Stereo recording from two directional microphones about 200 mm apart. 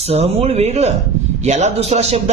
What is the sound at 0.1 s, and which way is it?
A man's voice, 30° right (ahead or behind).